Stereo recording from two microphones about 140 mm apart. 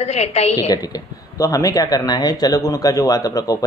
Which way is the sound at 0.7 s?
25° left (ahead or behind).